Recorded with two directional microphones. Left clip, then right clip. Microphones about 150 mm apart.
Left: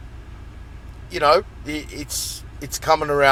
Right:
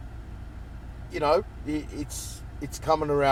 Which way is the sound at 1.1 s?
20° left (ahead or behind).